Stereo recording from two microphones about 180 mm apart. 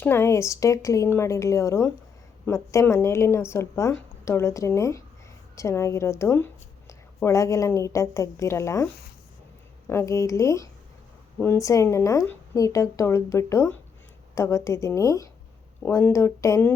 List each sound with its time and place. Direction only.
0.0 s speech: 15° left (ahead or behind)